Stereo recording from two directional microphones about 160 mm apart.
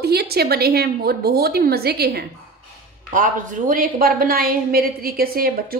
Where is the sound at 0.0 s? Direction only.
80° right.